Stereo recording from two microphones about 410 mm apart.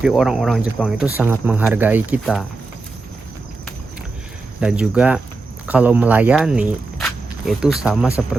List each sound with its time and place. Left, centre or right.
0.0 s speech: centre
4.6 s speech: centre